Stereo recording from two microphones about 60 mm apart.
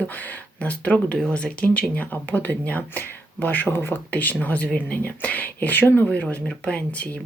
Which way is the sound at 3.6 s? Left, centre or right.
Left.